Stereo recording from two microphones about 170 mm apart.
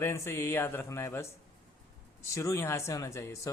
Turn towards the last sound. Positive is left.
turn(degrees=15)  # may be behind; listen again after turning